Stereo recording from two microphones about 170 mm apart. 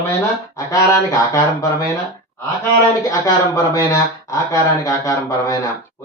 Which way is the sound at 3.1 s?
20° left (ahead or behind).